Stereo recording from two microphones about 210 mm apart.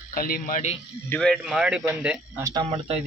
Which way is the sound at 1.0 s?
5° left (ahead or behind).